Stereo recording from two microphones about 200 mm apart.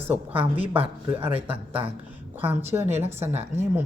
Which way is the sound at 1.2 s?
10° right (ahead or behind).